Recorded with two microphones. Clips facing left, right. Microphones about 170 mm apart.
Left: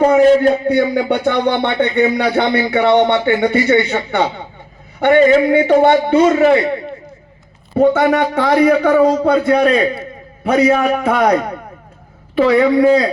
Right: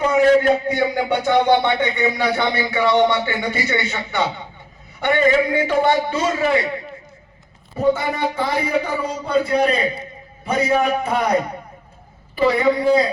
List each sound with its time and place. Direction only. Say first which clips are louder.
0.7 s music: left 5 dB; 55° left (ahead or behind)
3.9 s a man's voice: left 6 dB; 55° left (ahead or behind)
4.9 s music: left 7 dB; 50° left (ahead or behind)
6.5 s a man's voice: left 7 dB; 35° left (ahead or behind)
7.8 s a man's voice: left 7 dB; 85° left
12.4 s speech: left 6 dB; 80° left